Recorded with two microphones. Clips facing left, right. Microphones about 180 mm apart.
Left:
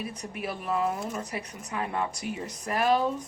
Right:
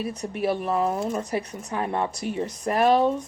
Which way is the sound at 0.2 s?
35° right (ahead or behind).